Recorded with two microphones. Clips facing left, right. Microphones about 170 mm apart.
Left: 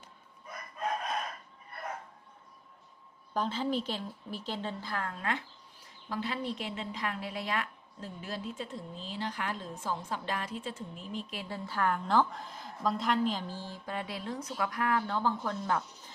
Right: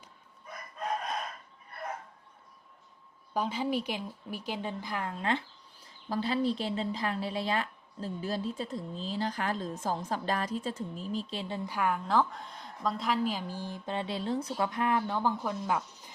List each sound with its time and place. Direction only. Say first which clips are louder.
3.3 s a woman's voice: right 1 dB; 10° right (ahead or behind)
5.2 s a woman's voice: right 4 dB; 30° right (ahead or behind); by 16.1 s 10° right (ahead or behind)